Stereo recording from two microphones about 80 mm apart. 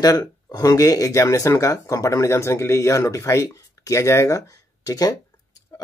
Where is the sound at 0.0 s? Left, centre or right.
Left.